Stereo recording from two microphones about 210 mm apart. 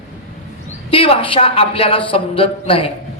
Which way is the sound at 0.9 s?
25° left (ahead or behind).